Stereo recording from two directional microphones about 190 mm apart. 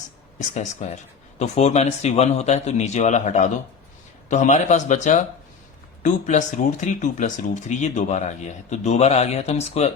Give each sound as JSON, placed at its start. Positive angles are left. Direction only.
{"t": 0.3, "sound": "speech", "side_deg": 40}